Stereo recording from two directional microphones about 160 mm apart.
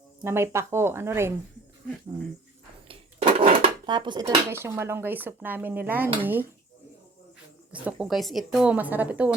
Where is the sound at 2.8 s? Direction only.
35° right (ahead or behind).